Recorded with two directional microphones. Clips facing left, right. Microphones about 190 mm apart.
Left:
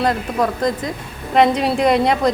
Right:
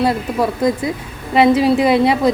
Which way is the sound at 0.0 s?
10° right (ahead or behind).